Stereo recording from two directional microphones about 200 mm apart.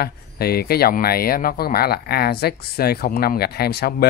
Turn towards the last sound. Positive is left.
turn(degrees=55)  # may be behind; listen again after turning